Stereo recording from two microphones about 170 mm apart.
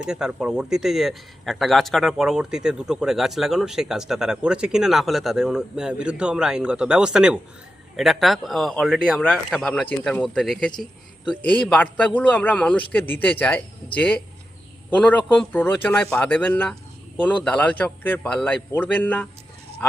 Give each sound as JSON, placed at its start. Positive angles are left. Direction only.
{"t": 0.0, "sound": "a man's voice", "side_deg": -5}